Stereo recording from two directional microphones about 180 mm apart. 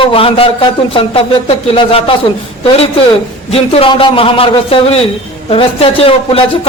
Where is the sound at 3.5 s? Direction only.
30° left (ahead or behind).